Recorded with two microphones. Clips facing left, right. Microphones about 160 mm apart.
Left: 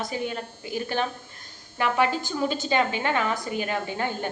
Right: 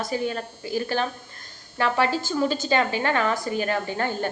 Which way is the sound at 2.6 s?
15° left (ahead or behind).